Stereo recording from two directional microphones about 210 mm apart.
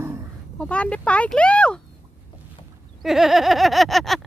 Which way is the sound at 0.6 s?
5° left (ahead or behind).